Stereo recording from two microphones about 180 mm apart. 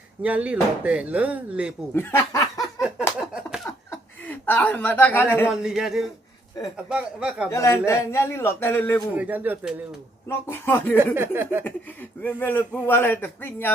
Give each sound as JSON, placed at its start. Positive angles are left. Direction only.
{"t": 0.2, "sound": "speech", "side_deg": -5}
{"t": 1.9, "sound": "snicker", "side_deg": 10}
{"t": 3.2, "sound": "a sound", "side_deg": -5}
{"t": 4.3, "sound": "speech", "side_deg": 10}
{"t": 5.5, "sound": "a man's voice", "side_deg": -5}
{"t": 7.5, "sound": "a man's voice", "side_deg": 15}
{"t": 9.1, "sound": "speech", "side_deg": -10}
{"t": 10.2, "sound": "a man's voice", "side_deg": 15}
{"t": 10.9, "sound": "speech", "side_deg": -10}
{"t": 12.2, "sound": "a man's voice", "side_deg": 10}